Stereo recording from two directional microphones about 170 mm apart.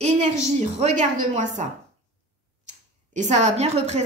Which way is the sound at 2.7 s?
45° right (ahead or behind).